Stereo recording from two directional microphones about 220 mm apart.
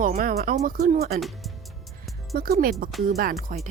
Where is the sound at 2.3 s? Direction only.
40° right (ahead or behind).